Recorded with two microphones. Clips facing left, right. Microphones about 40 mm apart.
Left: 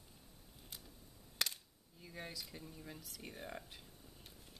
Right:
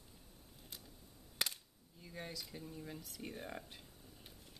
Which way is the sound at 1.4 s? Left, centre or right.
Centre.